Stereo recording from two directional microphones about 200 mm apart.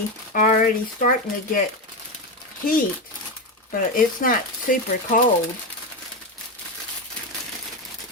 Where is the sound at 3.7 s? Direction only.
45° left (ahead or behind).